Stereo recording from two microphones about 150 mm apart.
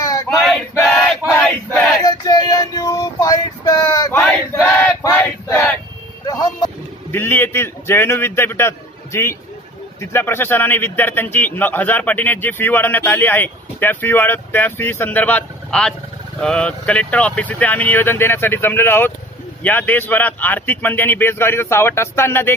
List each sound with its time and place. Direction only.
0.0 s male singing: 25° left (ahead or behind)
0.5 s male singing: 5° left (ahead or behind)
2.0 s female singing: 25° left (ahead or behind)
4.2 s a sound: 5° left (ahead or behind)
6.2 s vehicle: 25° left (ahead or behind)
7.1 s a man's voice: 15° left (ahead or behind)